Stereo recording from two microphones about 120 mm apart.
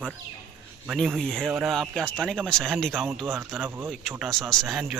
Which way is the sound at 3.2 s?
20° right (ahead or behind).